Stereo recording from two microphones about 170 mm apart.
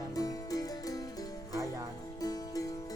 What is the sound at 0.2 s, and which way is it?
Music, 20° left (ahead or behind).